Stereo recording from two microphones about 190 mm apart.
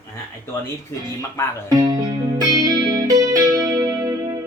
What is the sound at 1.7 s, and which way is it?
Music, 20° right (ahead or behind).